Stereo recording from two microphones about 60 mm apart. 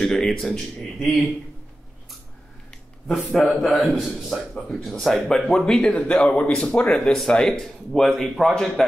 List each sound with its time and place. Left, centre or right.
0.0 s a man's voice: centre
3.3 s a man's voice: centre
4.6 s a man's voice: centre